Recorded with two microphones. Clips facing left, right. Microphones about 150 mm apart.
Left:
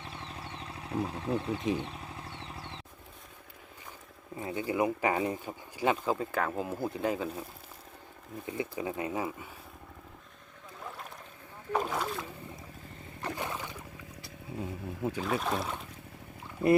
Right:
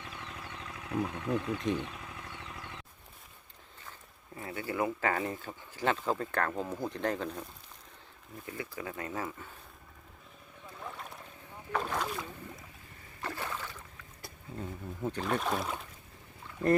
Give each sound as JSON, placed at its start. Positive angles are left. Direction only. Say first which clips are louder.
{"t": 0.0, "sound": "a sound", "louder": "left 2 dB", "side_deg": 30}
{"t": 1.8, "sound": "vehicle", "louder": "left 1 dB", "side_deg": 30}
{"t": 4.4, "sound": "speech", "louder": "left 4 dB", "side_deg": 20}
{"t": 8.4, "sound": "speech", "louder": "left 5 dB", "side_deg": 20}
{"t": 10.8, "sound": "boat", "louder": "even", "side_deg": 0}
{"t": 13.2, "sound": "boat", "louder": "left 2 dB", "side_deg": 15}
{"t": 14.6, "sound": "speech", "louder": "left 2 dB", "side_deg": 10}